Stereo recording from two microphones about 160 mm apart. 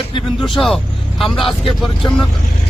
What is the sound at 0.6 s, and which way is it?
Vehicle, centre (ahead or behind).